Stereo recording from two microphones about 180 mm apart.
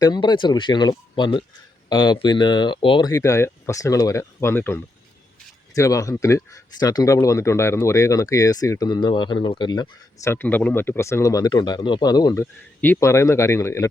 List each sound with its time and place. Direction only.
0.0 s speech: 25° left (ahead or behind)
10.3 s speech: 10° left (ahead or behind)